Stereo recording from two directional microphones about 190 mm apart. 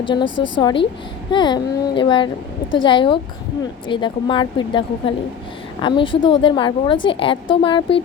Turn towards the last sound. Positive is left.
turn(degrees=25)  # may be behind; listen again after turning